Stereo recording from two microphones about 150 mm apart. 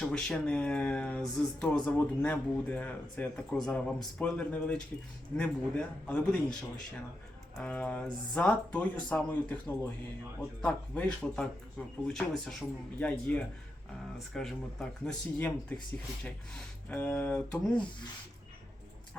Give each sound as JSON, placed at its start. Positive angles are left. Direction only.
{"t": 0.0, "sound": "speech", "side_deg": 5}
{"t": 16.9, "sound": "speech", "side_deg": 15}